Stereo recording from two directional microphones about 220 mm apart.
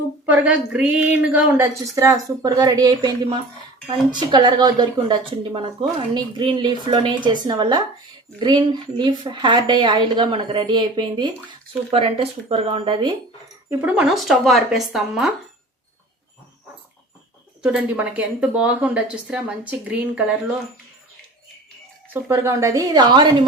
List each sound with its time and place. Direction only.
0.3 s a woman's voice: 5° right (ahead or behind); by 13.1 s 20° right (ahead or behind)
13.7 s a woman's voice: 5° right (ahead or behind)
17.6 s a woman's voice: 5° right (ahead or behind)
22.1 s a woman's voice: 10° right (ahead or behind)